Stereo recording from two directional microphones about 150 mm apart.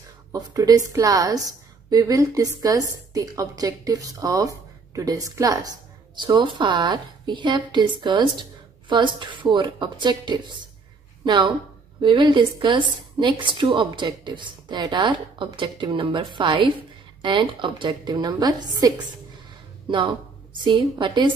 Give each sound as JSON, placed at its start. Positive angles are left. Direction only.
{"t": 0.3, "sound": "a woman's voice", "side_deg": -25}